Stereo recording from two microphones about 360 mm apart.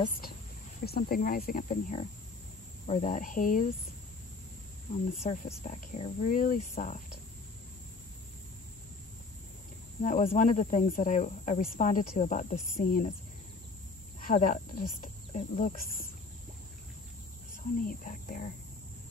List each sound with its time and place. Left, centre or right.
0.8 s speech: left
5.2 s speech: left
10.0 s speech: left
14.2 s speech: left
17.7 s speech: left